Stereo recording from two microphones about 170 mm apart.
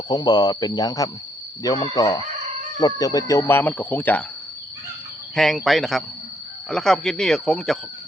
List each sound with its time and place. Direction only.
0.1 s speech: 25° left (ahead or behind)
5.3 s speech: centre (ahead or behind)